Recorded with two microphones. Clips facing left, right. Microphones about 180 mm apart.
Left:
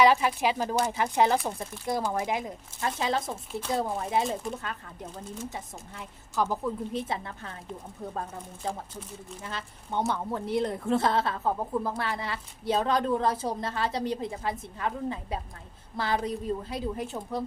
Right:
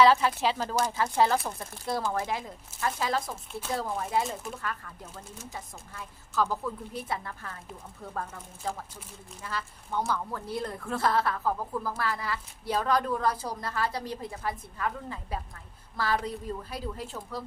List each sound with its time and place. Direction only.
0.0 s a woman's voice: 15° left (ahead or behind)
8.6 s a woman's voice: 20° left (ahead or behind)